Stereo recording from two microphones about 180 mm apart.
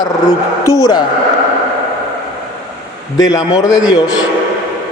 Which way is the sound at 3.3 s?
20° left (ahead or behind).